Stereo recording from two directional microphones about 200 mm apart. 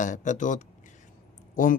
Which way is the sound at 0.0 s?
40° left (ahead or behind).